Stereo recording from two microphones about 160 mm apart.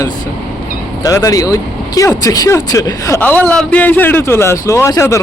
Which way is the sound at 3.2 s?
10° left (ahead or behind).